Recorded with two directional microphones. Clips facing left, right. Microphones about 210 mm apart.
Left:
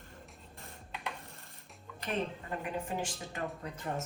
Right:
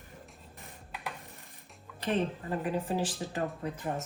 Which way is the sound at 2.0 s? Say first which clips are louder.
Right 5 dB; 35° right (ahead or behind).